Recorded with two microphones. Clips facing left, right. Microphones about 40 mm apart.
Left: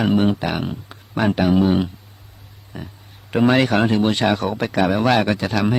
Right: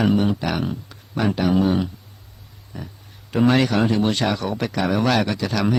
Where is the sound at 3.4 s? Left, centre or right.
Left.